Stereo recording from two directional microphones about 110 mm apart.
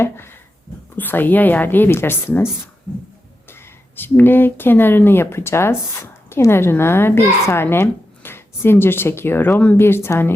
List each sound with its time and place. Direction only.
0.0 s a sound: 20° left (ahead or behind)
0.9 s speech: 15° left (ahead or behind)
3.5 s speech: 20° left (ahead or behind)